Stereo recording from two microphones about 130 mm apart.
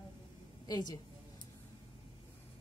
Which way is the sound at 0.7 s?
35° left (ahead or behind).